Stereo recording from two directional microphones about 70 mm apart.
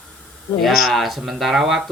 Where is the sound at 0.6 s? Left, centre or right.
Centre.